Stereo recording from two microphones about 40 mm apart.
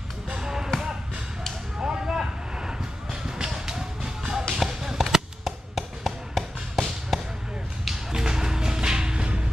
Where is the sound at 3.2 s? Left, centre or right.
Centre.